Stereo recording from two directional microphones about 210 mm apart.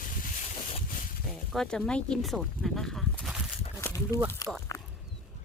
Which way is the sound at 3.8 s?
15° left (ahead or behind).